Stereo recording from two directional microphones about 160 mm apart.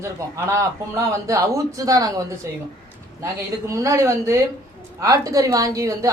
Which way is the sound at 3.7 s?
20° right (ahead or behind).